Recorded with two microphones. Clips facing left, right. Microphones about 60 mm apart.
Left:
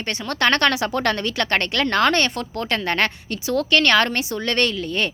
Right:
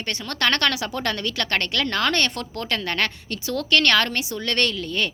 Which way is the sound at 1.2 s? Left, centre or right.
Left.